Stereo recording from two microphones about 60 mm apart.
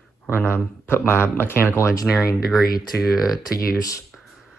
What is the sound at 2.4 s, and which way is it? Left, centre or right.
Speech, centre.